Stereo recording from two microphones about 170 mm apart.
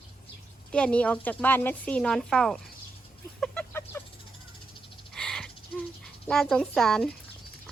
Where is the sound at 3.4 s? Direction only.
10° left (ahead or behind).